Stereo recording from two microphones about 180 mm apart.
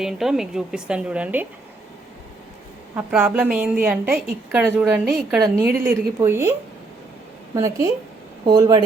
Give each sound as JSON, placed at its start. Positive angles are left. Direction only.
{"t": 0.0, "sound": "a woman's voice", "side_deg": -5}
{"t": 2.9, "sound": "a woman's voice", "side_deg": -5}
{"t": 7.5, "sound": "a woman's voice", "side_deg": -15}